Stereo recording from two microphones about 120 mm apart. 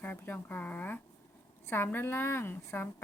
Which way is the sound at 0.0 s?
15° left (ahead or behind).